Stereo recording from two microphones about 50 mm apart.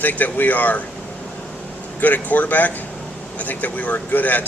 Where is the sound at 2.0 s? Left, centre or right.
Left.